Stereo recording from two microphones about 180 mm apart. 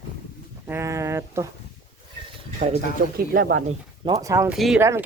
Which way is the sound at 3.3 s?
50° right (ahead or behind).